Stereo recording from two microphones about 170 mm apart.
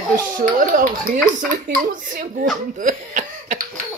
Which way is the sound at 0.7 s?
50° right (ahead or behind).